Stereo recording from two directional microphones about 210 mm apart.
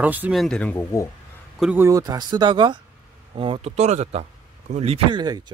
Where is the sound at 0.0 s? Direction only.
10° right (ahead or behind); by 1.0 s 10° left (ahead or behind).